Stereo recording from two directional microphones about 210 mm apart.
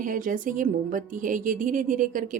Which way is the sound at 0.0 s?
40° right (ahead or behind).